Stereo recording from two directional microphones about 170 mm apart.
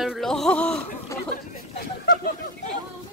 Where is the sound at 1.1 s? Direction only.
15° left (ahead or behind).